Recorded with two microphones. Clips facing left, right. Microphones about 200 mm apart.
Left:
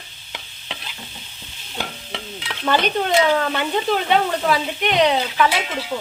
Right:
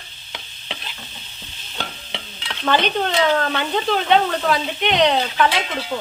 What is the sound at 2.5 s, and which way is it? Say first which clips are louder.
Speech: even; 10° left (ahead or behind).